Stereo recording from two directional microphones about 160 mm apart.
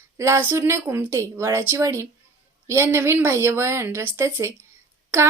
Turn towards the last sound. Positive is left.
turn(degrees=-15)  # may be behind; listen again after turning